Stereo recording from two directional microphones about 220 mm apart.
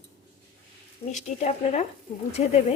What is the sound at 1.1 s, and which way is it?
Speech, 30° left (ahead or behind).